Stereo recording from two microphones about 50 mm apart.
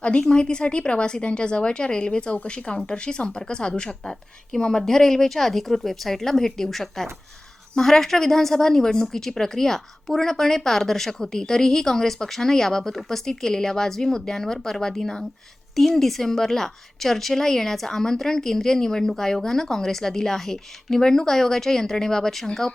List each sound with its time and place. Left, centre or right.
0.0 s a woman's voice: centre